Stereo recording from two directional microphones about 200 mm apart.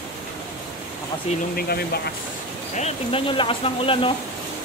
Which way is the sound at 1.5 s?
50° left (ahead or behind).